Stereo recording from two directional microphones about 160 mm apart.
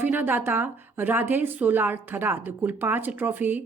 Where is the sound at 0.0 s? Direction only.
10° right (ahead or behind).